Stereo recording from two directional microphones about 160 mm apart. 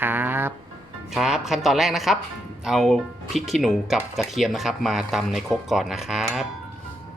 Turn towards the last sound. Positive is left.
turn(degrees=-5)  # may be behind; listen again after turning